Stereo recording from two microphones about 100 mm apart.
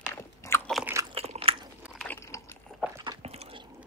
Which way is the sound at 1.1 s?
75° right (ahead or behind).